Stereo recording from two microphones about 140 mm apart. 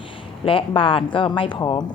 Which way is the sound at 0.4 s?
40° left (ahead or behind).